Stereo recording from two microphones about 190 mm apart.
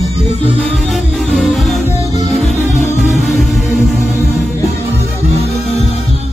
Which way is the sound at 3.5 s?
Centre (ahead or behind).